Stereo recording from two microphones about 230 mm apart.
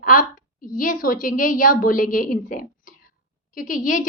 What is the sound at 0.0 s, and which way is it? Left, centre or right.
A woman's voice, left.